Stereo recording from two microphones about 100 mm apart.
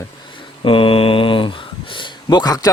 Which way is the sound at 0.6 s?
65° left (ahead or behind).